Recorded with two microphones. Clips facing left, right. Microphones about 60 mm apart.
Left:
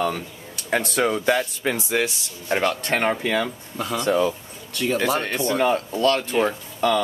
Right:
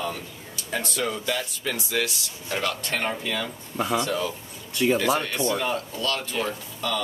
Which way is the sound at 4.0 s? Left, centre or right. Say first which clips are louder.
Left 6 dB; left.